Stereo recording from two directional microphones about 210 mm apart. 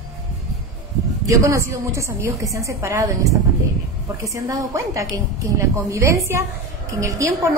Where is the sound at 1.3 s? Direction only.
15° right (ahead or behind).